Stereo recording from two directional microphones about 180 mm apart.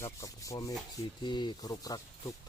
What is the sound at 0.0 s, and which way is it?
Rub, 15° left (ahead or behind).